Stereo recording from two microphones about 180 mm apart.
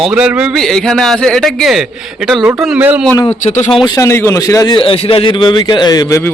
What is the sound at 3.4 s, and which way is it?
Speech, 40° left (ahead or behind).